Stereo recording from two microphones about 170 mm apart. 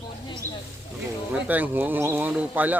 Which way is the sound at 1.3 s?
10° right (ahead or behind).